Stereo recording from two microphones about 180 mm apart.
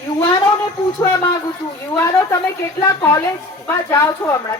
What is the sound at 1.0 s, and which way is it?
A man's voice, 20° left (ahead or behind).